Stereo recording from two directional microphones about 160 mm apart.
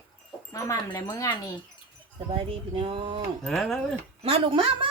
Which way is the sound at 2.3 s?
35° right (ahead or behind).